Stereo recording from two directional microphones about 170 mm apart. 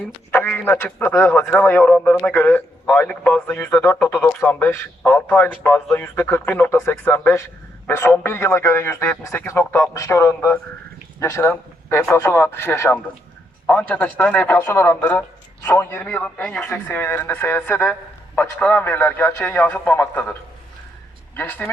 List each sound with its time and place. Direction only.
0.3 s speech: 10° left (ahead or behind)
21.3 s speech: 10° left (ahead or behind)